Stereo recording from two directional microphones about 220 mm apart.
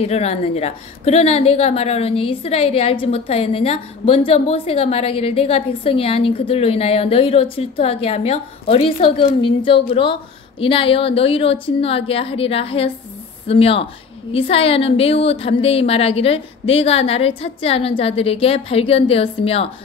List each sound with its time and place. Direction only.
0.0 s a woman's voice: 30° left (ahead or behind)